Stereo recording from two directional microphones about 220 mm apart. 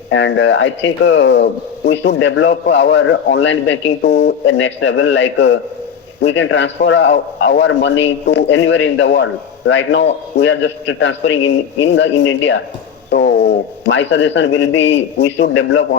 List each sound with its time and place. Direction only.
0.1 s speech: 60° left (ahead or behind)
13.1 s a sound: 50° left (ahead or behind)
13.8 s speech: 55° left (ahead or behind)